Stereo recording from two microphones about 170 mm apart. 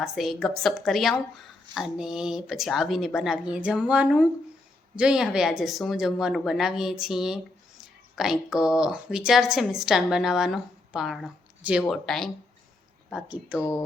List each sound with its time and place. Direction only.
0.0 s speech: centre (ahead or behind)
13.6 s speech: 15° left (ahead or behind)